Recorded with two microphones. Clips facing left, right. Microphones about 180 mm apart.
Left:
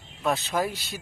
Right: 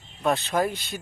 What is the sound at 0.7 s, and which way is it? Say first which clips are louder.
Speech: right 3 dB; 50° right (ahead or behind).